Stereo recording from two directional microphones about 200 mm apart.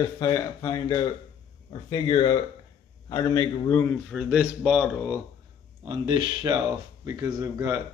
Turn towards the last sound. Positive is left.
turn(degrees=-15)  # may be behind; listen again after turning